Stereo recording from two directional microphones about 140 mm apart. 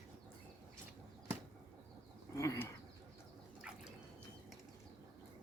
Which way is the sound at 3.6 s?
5° right (ahead or behind).